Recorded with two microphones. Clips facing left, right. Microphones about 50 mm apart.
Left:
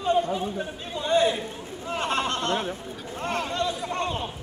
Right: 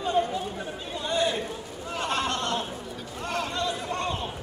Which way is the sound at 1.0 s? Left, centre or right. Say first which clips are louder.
Left 5 dB; left.